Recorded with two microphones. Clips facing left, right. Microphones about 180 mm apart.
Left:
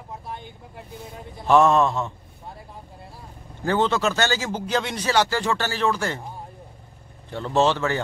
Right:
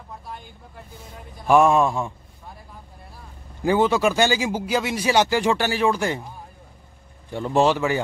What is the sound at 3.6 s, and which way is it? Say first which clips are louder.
Speech: right 3 dB; 10° right (ahead or behind).